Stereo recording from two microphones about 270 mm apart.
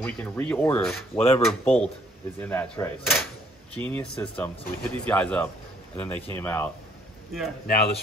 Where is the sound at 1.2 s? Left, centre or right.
Left.